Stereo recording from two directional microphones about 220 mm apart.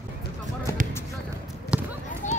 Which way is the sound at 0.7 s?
15° left (ahead or behind).